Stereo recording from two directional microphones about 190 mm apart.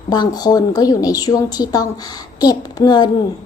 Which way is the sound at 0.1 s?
20° left (ahead or behind).